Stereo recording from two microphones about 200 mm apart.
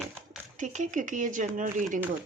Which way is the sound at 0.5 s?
35° right (ahead or behind).